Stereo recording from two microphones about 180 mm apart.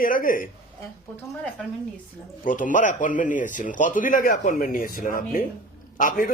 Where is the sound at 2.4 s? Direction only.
45° left (ahead or behind).